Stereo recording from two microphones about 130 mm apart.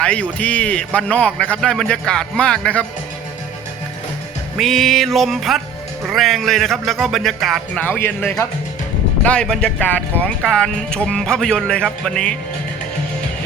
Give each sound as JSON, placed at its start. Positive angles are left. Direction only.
{"t": 0.0, "sound": "a man's voice", "side_deg": 10}
{"t": 4.5, "sound": "speech", "side_deg": 0}
{"t": 7.8, "sound": "a man's voice", "side_deg": 15}